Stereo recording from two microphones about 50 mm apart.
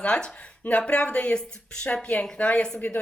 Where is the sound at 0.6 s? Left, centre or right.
Left.